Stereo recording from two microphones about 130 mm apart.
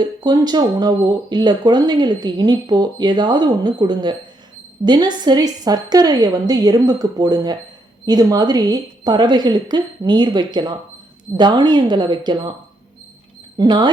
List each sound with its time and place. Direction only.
0.0 s speech: 35° right (ahead or behind)
13.6 s speech: 35° right (ahead or behind)